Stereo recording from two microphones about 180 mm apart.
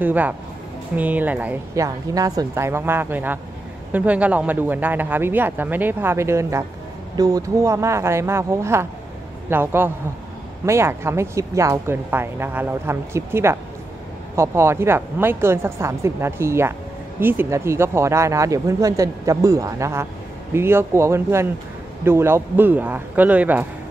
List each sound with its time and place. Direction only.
0.0 s speech: 10° right (ahead or behind)